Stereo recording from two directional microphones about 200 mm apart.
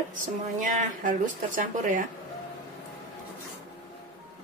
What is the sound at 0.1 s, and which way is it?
A woman's voice, 40° right (ahead or behind).